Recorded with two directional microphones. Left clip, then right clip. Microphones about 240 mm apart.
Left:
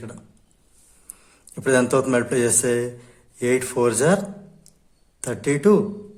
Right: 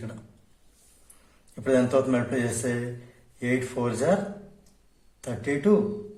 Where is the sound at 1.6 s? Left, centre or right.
Left.